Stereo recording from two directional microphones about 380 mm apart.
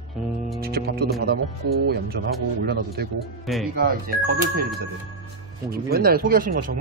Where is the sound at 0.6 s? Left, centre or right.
Right.